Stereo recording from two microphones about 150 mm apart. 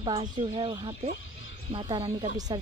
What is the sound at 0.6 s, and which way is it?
Speech, 35° right (ahead or behind).